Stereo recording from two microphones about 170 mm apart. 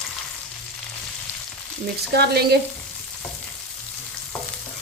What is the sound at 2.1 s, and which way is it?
Speech, 75° right (ahead or behind).